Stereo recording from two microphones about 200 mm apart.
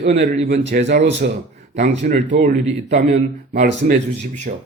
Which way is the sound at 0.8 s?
60° right (ahead or behind).